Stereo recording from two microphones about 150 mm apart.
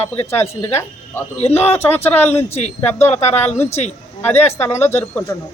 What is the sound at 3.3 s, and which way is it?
Speech, 15° left (ahead or behind).